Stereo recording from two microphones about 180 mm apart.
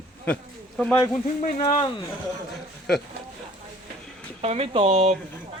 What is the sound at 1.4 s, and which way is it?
Speech, 40° left (ahead or behind).